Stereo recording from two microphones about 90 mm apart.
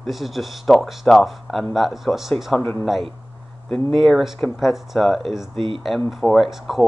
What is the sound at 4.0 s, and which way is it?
Speech, centre (ahead or behind).